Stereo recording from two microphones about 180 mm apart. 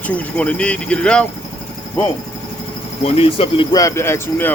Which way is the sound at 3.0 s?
30° left (ahead or behind).